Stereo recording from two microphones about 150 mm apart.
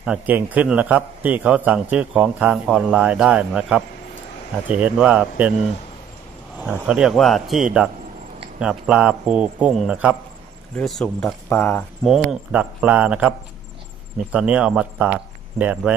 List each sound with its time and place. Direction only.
0.0 s a man's voice: 10° right (ahead or behind)
6.6 s a man's voice: 10° right (ahead or behind)
11.4 s speech: 15° left (ahead or behind)
12.0 s a man's voice: centre (ahead or behind)
14.3 s a man's voice: 5° right (ahead or behind)